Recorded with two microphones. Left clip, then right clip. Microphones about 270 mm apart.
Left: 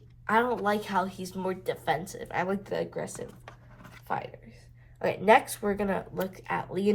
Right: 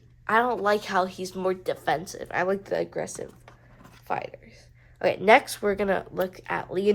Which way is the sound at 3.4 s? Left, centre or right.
Centre.